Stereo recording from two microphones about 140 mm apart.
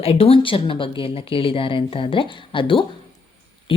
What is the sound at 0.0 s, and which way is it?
Speech, 45° left (ahead or behind).